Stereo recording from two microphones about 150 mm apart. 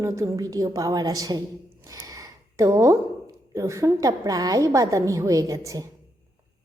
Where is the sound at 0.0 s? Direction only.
20° right (ahead or behind).